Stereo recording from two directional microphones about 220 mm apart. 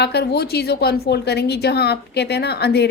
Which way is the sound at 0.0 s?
50° left (ahead or behind).